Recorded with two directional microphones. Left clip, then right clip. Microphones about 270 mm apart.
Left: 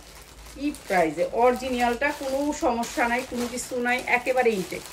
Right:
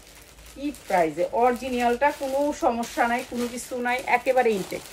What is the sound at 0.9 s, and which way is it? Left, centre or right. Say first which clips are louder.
A woman's voice: right 1 dB; centre.